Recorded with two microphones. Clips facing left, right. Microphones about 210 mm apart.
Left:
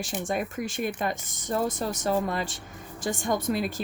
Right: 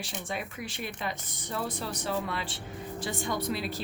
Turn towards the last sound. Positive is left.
turn(degrees=45)  # may be behind; listen again after turning